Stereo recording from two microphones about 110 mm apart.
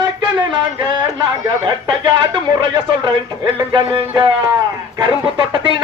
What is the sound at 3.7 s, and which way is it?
Music, 45° right (ahead or behind).